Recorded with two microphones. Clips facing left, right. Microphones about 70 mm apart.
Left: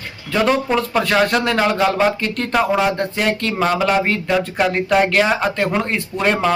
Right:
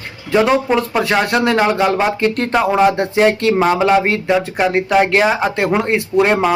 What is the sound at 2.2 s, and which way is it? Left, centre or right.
A man's voice, right.